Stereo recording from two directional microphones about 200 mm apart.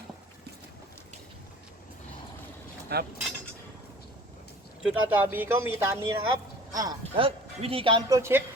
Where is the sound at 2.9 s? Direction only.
50° right (ahead or behind).